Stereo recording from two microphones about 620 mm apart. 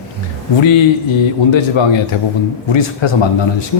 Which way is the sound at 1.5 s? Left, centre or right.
Left.